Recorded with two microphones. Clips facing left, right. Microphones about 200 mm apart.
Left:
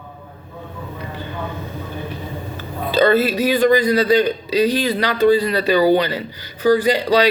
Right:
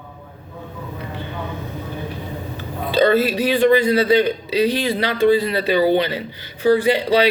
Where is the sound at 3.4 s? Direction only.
30° right (ahead or behind).